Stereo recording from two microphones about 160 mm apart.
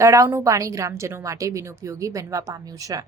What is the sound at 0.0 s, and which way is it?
Speech, 20° right (ahead or behind).